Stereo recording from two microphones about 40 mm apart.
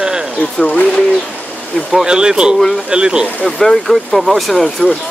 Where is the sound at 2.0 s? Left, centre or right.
Right.